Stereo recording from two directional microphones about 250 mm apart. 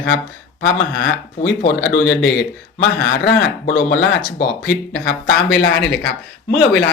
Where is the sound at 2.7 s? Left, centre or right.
Left.